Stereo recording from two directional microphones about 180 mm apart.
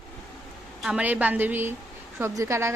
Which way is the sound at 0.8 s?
5° right (ahead or behind).